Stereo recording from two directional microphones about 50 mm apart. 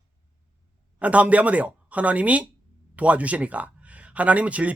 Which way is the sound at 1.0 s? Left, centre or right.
Right.